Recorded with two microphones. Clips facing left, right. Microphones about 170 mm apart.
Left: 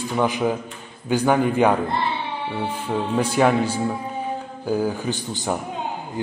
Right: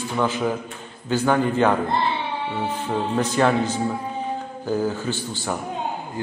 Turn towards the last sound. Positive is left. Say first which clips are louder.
# left 2 dB
turn(degrees=15)  # may be behind; listen again after turning